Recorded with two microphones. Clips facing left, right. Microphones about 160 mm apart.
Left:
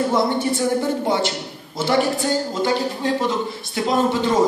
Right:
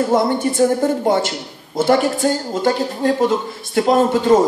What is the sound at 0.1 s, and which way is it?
A man's voice, 50° right (ahead or behind).